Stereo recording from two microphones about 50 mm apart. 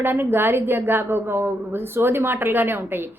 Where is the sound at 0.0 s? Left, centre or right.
Right.